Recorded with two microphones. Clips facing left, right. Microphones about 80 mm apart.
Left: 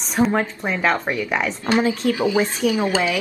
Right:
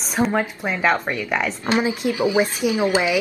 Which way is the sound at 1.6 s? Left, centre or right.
Centre.